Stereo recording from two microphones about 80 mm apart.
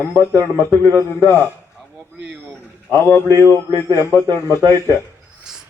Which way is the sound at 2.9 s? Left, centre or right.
Left.